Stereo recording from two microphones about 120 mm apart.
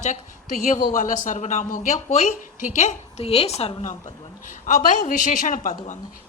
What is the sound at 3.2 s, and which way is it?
Speech, 55° left (ahead or behind).